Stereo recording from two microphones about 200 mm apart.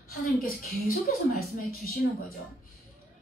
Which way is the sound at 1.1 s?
45° left (ahead or behind).